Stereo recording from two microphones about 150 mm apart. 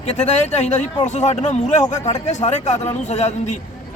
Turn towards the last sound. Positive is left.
turn(degrees=50)  # may be behind; listen again after turning